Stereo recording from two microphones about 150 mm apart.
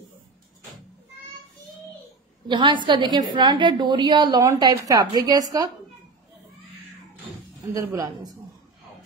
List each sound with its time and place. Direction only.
2.4 s a woman's voice: 30° right (ahead or behind)
7.6 s a woman's voice: 20° right (ahead or behind)